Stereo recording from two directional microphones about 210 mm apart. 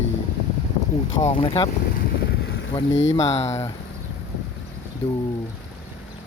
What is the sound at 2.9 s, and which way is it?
Speech, 60° left (ahead or behind).